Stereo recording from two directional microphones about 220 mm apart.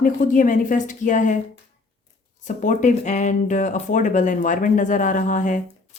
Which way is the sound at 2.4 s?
35° left (ahead or behind).